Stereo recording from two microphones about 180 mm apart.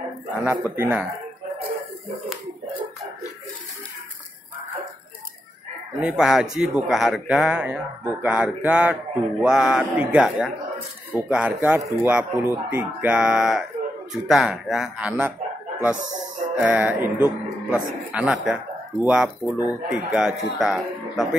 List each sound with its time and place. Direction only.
0.4 s speech: 10° right (ahead or behind)
5.9 s speech: 5° right (ahead or behind)
16.5 s speech: 10° right (ahead or behind)